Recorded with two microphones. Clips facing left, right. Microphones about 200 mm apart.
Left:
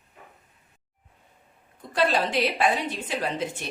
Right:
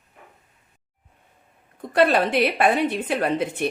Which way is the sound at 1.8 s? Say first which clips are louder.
Right 5 dB; 60° right (ahead or behind).